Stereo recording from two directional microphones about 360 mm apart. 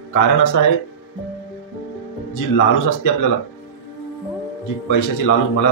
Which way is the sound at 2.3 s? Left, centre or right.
Left.